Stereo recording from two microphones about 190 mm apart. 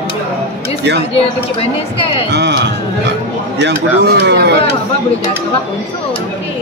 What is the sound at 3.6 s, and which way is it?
Speech, 65° right (ahead or behind).